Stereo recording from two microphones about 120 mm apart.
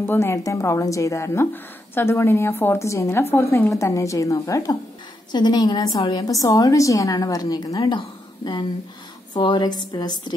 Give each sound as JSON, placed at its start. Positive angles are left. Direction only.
{"t": 0.0, "sound": "a woman's voice", "side_deg": 20}
{"t": 9.3, "sound": "a woman's voice", "side_deg": 40}